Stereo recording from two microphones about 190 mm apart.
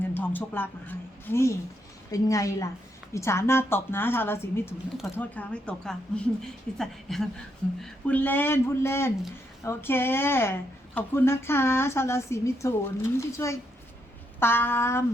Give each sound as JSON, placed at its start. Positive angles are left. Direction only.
{"t": 0.1, "sound": "speech", "side_deg": 10}